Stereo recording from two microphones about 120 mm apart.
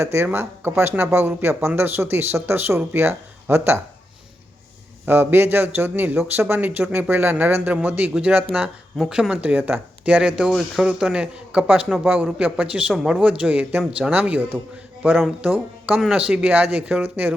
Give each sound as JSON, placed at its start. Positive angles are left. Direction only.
{"t": 0.0, "sound": "speech", "side_deg": -20}
{"t": 5.0, "sound": "speech", "side_deg": -20}